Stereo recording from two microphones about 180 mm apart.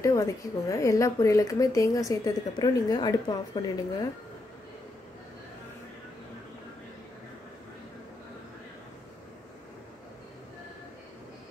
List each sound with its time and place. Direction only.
0.0 s speech: 15° left (ahead or behind)